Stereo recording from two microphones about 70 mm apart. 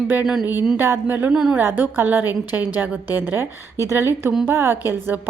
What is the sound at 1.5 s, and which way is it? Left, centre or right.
A woman's voice, right.